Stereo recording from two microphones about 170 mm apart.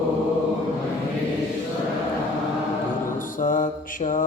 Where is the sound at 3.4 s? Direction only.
50° left (ahead or behind).